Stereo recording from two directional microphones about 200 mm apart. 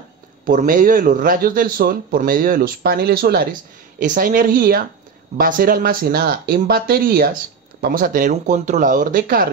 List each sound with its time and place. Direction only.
0.5 s speech: 45° right (ahead or behind)